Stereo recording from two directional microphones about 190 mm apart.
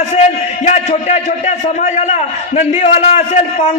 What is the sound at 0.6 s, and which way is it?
A man's voice, 35° left (ahead or behind).